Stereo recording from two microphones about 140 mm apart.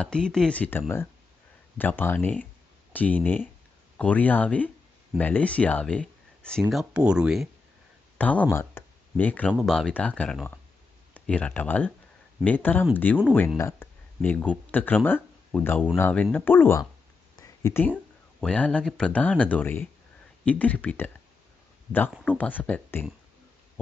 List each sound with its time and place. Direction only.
0.0 s speech: 5° left (ahead or behind)
6.7 s speech: 5° right (ahead or behind)
8.2 s speech: 10° left (ahead or behind)
17.4 s a sound: 20° left (ahead or behind)
18.4 s speech: 5° left (ahead or behind)
22.2 s speech: 10° left (ahead or behind)